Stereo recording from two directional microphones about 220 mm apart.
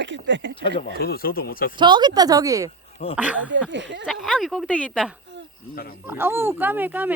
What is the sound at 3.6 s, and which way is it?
Speech, 55° right (ahead or behind).